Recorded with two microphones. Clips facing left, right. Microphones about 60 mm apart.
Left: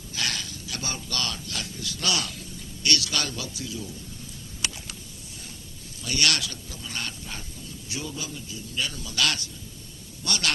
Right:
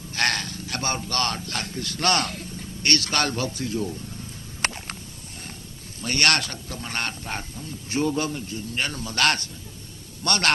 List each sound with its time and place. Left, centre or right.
0.1 s a man's voice: right
4.6 s a sound: right
6.0 s a man's voice: right